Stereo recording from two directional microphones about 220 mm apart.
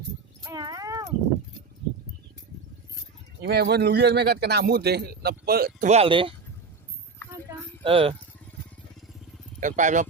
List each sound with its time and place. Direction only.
0.4 s horse: 15° right (ahead or behind)
3.4 s speech: 45° right (ahead or behind)
5.9 s speech: 25° right (ahead or behind)
7.9 s speech: 25° right (ahead or behind)
9.6 s speech: 35° right (ahead or behind)